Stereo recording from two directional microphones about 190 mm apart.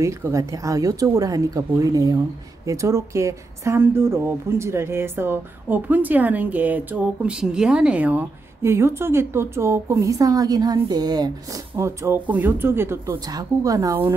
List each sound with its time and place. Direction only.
0.0 s speech: 15° right (ahead or behind)